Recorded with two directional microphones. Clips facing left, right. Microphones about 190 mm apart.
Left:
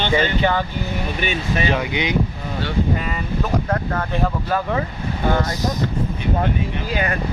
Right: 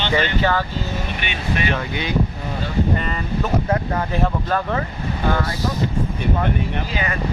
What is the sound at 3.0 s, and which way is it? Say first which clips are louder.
Speech: even; 5° left (ahead or behind).